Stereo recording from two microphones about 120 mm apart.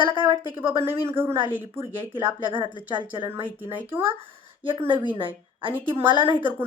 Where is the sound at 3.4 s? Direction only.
15° right (ahead or behind).